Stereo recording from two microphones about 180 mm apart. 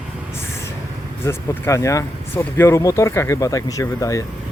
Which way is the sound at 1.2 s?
15° left (ahead or behind).